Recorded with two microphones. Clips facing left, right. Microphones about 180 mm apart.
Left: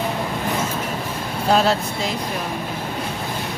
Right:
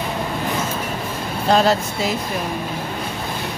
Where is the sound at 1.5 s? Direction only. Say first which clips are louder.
Right 2 dB; centre (ahead or behind).